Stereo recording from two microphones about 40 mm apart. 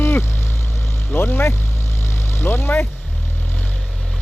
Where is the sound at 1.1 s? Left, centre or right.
Left.